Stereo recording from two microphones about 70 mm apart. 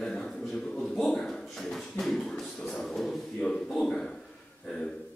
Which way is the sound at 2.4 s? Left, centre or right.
Centre.